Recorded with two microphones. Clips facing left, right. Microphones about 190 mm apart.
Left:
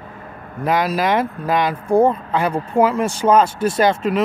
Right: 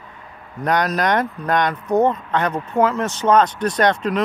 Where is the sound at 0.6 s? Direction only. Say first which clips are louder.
Left 1 dB; 5° left (ahead or behind).